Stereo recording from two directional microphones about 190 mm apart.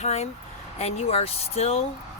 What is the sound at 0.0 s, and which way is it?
Speech, 35° left (ahead or behind).